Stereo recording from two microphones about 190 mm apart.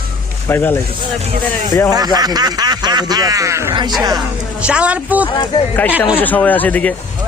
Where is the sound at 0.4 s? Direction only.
10° left (ahead or behind).